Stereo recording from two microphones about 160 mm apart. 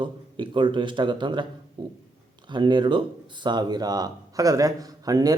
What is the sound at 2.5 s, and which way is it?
Speech, 30° right (ahead or behind).